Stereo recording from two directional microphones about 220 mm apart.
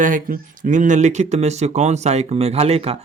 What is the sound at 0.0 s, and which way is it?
Speech, 35° right (ahead or behind).